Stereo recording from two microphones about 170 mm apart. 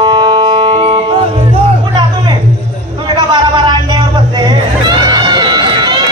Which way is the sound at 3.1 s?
25° right (ahead or behind).